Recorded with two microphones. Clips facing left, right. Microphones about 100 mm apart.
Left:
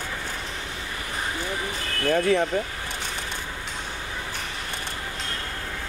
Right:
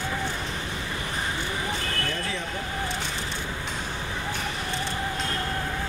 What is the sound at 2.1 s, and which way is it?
Speech, 55° left (ahead or behind).